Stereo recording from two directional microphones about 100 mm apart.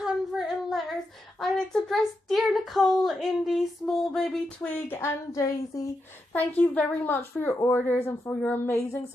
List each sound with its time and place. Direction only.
0.0 s humming: centre (ahead or behind)
1.4 s a child's voice: centre (ahead or behind)
4.7 s speech: 25° left (ahead or behind)
6.3 s a child's voice: 15° left (ahead or behind)